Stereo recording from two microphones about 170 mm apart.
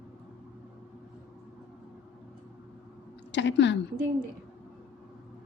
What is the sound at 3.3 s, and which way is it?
Speech, 90° left.